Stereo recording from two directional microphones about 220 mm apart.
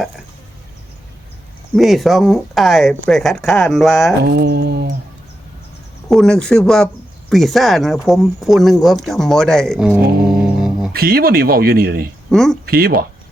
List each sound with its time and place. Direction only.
1.7 s speech: centre (ahead or behind)
4.2 s speech: 45° right (ahead or behind)
6.1 s speech: 5° left (ahead or behind)
10.9 s speech: 45° right (ahead or behind)
12.3 s speech: centre (ahead or behind)
12.6 s speech: 45° right (ahead or behind)